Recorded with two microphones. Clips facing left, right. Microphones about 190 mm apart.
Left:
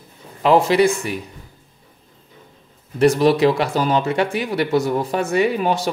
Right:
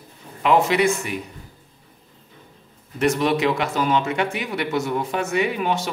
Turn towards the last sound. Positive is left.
turn(degrees=35)  # may be behind; listen again after turning